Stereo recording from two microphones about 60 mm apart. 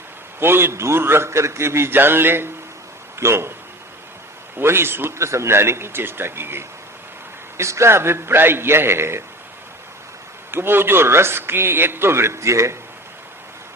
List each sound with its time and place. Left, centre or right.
0.3 s speech: right
4.6 s speech: right
10.5 s speech: right